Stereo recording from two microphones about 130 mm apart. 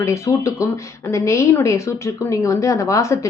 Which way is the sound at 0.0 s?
25° left (ahead or behind).